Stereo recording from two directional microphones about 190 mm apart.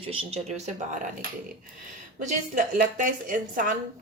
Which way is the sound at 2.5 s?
45° right (ahead or behind).